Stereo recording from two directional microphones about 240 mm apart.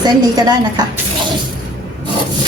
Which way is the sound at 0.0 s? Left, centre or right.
Centre.